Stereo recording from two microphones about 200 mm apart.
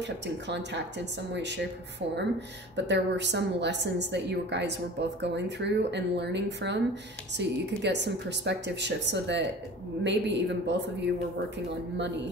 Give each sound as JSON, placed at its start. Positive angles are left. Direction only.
{"t": 0.0, "sound": "a woman's voice", "side_deg": -60}